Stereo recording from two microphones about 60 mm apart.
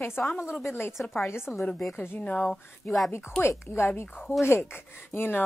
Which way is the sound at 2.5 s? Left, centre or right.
Centre.